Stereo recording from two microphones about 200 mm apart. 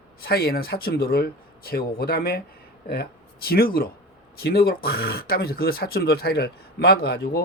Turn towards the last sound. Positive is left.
turn(degrees=55)  # may be behind; listen again after turning